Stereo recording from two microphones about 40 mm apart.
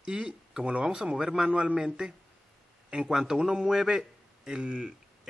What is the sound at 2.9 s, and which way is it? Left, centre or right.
A man's voice, right.